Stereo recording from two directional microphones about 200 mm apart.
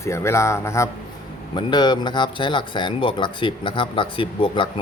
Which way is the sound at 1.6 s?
20° left (ahead or behind).